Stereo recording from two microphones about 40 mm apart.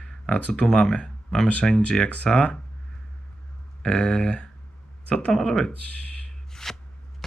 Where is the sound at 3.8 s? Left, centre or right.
Centre.